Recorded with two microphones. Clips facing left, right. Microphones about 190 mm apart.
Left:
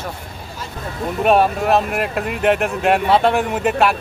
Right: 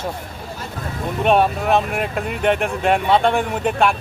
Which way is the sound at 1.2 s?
5° left (ahead or behind).